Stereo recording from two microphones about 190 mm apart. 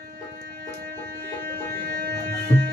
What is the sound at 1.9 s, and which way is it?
Music, 50° right (ahead or behind).